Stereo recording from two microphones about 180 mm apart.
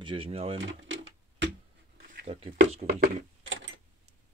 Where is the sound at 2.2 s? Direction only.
35° right (ahead or behind).